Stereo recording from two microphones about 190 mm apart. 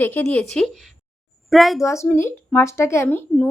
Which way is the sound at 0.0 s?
10° left (ahead or behind).